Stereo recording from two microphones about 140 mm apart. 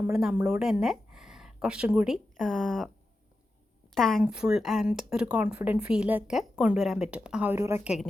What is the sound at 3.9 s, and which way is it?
A woman's voice, centre (ahead or behind).